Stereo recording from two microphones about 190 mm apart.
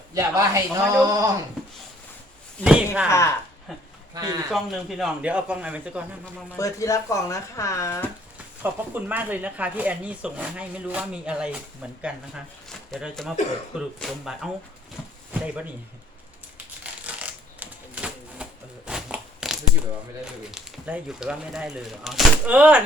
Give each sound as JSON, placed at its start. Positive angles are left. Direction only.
{"t": 0.1, "sound": "speech", "side_deg": -15}
{"t": 2.6, "sound": "speech", "side_deg": -5}
{"t": 3.1, "sound": "speech", "side_deg": 15}
{"t": 3.7, "sound": "speech", "side_deg": 0}
{"t": 4.1, "sound": "a man's voice", "side_deg": -20}
{"t": 4.5, "sound": "speech", "side_deg": 0}
{"t": 6.6, "sound": "speech", "side_deg": 15}
{"t": 8.6, "sound": "speech", "side_deg": -10}
{"t": 16.8, "sound": "typewriter", "side_deg": -5}
{"t": 18.9, "sound": "biting", "side_deg": -5}
{"t": 20.5, "sound": "speech", "side_deg": -5}